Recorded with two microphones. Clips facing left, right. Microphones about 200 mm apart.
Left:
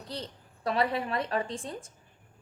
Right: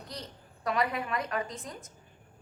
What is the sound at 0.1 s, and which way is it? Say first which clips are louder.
A woman's voice: left 7 dB; 30° left (ahead or behind).